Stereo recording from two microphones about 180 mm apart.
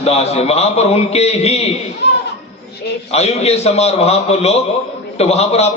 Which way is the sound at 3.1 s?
35° left (ahead or behind).